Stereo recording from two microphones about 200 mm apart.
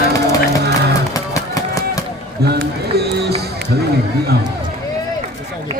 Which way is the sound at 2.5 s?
55° right (ahead or behind).